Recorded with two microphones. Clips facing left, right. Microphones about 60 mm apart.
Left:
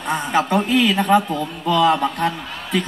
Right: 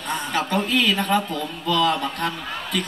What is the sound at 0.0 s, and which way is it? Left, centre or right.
A man's voice, centre.